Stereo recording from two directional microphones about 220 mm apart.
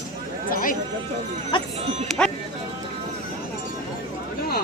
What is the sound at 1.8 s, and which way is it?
Speech, 30° right (ahead or behind).